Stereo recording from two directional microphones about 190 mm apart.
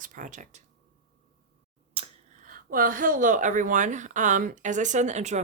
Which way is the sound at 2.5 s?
45° right (ahead or behind).